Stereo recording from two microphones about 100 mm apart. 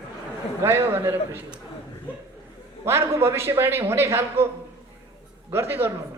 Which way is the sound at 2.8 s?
25° right (ahead or behind).